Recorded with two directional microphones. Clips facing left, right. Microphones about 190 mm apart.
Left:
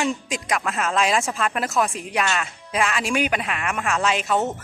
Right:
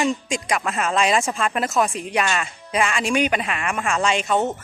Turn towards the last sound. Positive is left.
turn(degrees=5)  # may be behind; listen again after turning